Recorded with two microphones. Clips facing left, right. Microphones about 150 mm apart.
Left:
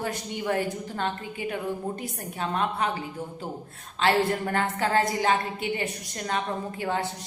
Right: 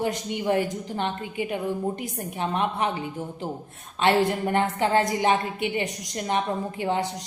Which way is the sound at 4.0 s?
20° right (ahead or behind).